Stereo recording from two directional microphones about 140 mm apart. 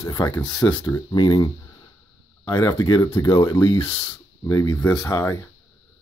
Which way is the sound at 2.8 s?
35° left (ahead or behind).